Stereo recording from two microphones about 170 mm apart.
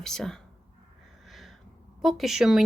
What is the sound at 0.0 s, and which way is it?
Speech, 5° left (ahead or behind).